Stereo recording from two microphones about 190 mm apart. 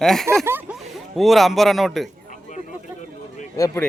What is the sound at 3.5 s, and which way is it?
Speech, 15° left (ahead or behind).